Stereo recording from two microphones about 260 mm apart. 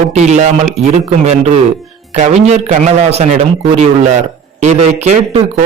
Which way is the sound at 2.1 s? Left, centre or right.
Right.